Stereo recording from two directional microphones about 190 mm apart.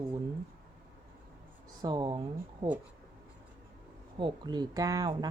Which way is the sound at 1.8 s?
20° right (ahead or behind).